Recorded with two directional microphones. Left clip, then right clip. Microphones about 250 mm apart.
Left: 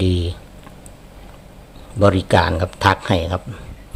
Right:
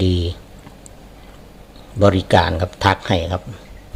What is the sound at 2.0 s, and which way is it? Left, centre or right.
A man's voice, centre.